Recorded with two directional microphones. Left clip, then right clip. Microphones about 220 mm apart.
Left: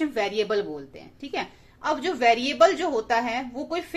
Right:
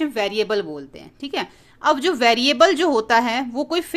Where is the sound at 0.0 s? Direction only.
30° right (ahead or behind).